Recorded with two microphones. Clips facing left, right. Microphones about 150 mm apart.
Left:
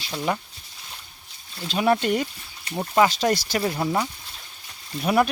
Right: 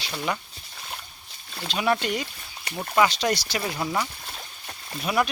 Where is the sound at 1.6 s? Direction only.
40° left (ahead or behind).